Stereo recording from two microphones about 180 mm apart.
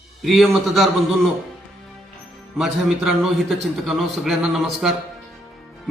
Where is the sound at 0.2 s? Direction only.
Centre (ahead or behind).